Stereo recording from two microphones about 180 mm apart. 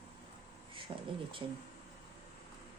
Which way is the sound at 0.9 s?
25° right (ahead or behind).